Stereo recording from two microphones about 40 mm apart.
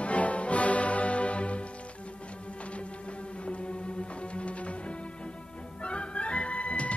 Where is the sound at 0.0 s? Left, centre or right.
Left.